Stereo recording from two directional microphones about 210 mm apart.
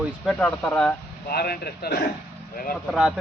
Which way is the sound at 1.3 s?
50° left (ahead or behind).